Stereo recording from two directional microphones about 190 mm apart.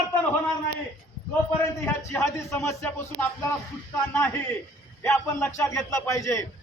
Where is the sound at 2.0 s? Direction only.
15° left (ahead or behind).